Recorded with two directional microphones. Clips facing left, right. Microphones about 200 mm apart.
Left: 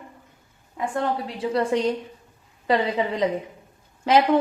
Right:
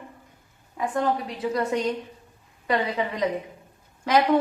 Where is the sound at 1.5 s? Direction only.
30° left (ahead or behind).